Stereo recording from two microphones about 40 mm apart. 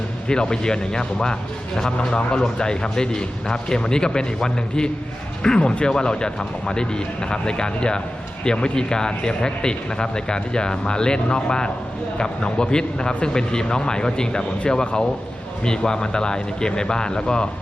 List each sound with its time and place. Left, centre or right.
0.3 s a man's voice: left